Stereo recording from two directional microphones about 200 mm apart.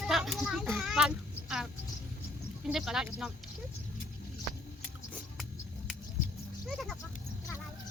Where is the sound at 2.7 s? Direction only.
Centre (ahead or behind).